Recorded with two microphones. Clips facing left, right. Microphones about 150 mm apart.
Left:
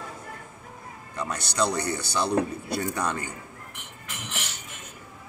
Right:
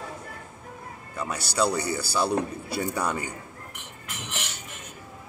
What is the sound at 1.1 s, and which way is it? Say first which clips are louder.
A man's voice: right 1 dB; 5° right (ahead or behind).